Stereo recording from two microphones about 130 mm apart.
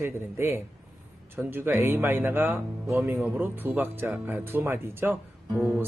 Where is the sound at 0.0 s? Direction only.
20° right (ahead or behind).